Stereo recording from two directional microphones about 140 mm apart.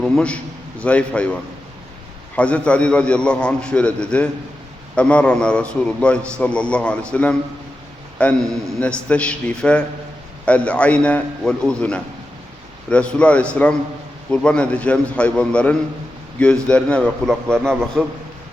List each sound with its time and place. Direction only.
0.0 s a man's voice: 5° left (ahead or behind)